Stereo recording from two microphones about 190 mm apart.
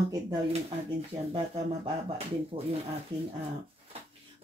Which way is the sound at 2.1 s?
30° right (ahead or behind).